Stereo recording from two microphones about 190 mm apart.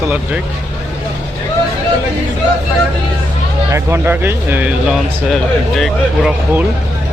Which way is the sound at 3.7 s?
10° right (ahead or behind).